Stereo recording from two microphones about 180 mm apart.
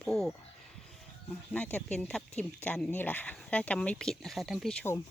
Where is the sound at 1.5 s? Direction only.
5° left (ahead or behind).